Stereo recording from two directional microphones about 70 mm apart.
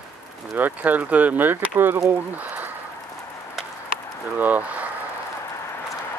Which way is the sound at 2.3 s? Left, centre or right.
Right.